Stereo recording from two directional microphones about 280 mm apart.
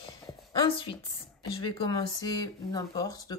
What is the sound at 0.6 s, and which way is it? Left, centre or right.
A woman's voice, centre.